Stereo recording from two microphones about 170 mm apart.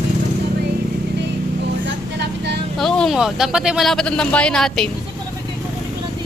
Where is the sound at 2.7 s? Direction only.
5° left (ahead or behind).